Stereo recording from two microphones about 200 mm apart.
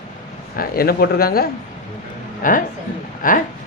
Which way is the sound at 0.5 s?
45° left (ahead or behind).